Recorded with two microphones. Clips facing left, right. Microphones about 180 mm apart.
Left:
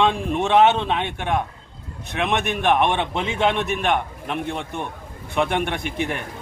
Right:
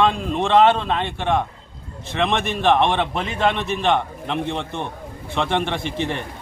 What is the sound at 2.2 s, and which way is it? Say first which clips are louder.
A man's voice: right 1 dB; 15° left (ahead or behind).